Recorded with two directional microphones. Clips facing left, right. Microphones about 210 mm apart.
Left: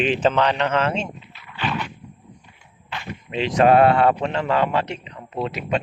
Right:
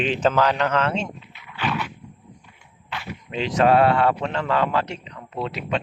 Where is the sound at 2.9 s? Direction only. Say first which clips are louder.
Left 1 dB; 5° right (ahead or behind).